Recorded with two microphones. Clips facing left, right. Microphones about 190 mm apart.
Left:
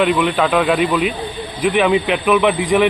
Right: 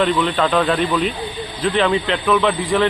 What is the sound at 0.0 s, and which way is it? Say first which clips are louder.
Speech: left 2 dB; 10° left (ahead or behind).